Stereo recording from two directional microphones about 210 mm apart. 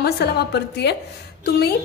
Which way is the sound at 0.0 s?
50° left (ahead or behind).